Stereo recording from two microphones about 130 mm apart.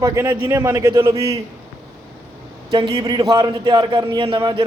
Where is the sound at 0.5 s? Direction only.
25° right (ahead or behind).